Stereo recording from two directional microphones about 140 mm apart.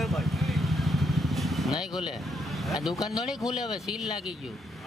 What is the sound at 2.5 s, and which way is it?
Speech, centre (ahead or behind).